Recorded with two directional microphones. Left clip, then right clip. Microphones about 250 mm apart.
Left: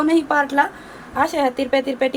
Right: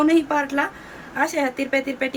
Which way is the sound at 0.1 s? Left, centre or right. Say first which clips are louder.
Left 2 dB; centre.